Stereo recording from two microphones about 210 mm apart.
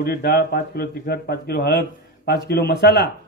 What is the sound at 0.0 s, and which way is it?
A man's voice, 50° left (ahead or behind).